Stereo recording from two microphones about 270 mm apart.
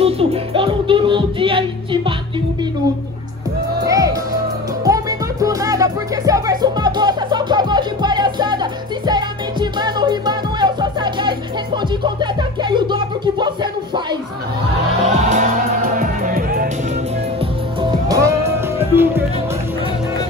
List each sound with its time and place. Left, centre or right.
0.0 s music: right
3.8 s music: centre
15.0 s music: right
18.8 s music: centre